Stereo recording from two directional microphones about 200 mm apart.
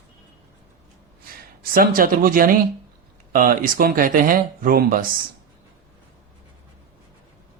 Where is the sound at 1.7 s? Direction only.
45° right (ahead or behind).